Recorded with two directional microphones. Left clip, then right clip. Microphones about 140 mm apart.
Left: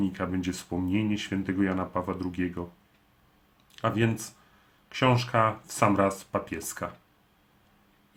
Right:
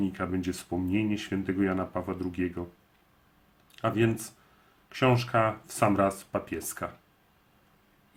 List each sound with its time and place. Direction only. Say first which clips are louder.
0.0 s speech: left 1 dB; 20° left (ahead or behind)
3.7 s speech: even; 20° left (ahead or behind)